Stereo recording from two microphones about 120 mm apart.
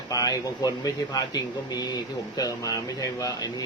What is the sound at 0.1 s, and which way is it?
Speech, 30° left (ahead or behind).